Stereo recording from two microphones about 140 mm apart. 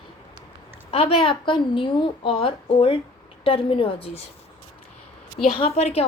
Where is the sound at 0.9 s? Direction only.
45° left (ahead or behind).